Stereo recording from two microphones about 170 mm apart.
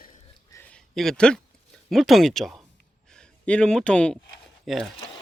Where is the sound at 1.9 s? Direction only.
Centre (ahead or behind).